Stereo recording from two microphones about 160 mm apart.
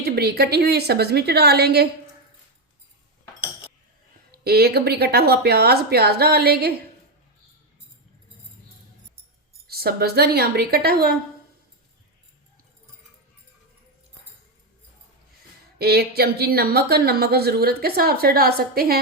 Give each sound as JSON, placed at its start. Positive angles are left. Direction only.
{"t": 0.0, "sound": "speech", "side_deg": -75}
{"t": 4.3, "sound": "speech", "side_deg": -75}
{"t": 9.6, "sound": "speech", "side_deg": -75}
{"t": 15.8, "sound": "speech", "side_deg": -80}